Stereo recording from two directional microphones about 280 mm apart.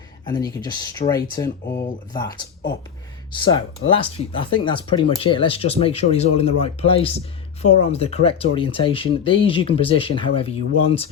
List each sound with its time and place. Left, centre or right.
0.3 s speech: centre